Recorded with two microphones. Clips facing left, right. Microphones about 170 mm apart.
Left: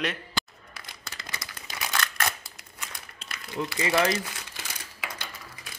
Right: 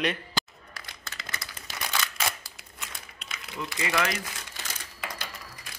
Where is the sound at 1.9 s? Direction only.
5° right (ahead or behind).